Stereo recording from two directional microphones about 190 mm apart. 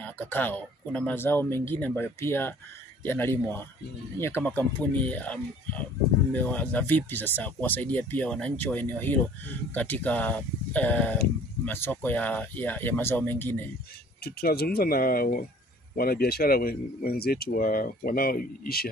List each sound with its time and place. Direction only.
0.0 s speech: 10° left (ahead or behind)
14.2 s speech: 55° left (ahead or behind)